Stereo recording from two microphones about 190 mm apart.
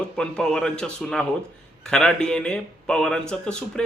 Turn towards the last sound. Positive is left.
turn(degrees=5)  # may be behind; listen again after turning